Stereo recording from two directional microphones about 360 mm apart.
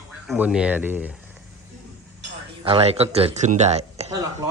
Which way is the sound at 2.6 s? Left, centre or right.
Centre.